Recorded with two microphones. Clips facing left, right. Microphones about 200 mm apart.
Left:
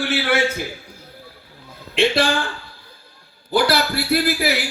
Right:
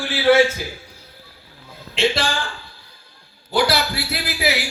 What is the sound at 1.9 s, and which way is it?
Speech, 55° left (ahead or behind).